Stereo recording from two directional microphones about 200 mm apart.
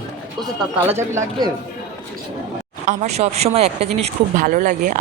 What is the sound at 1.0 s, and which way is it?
Speech, 15° right (ahead or behind).